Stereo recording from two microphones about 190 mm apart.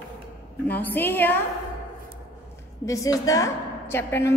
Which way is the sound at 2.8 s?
15° left (ahead or behind).